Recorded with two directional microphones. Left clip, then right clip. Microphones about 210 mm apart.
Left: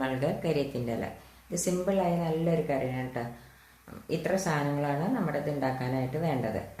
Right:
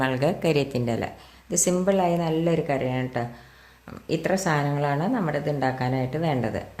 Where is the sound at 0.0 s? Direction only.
50° right (ahead or behind).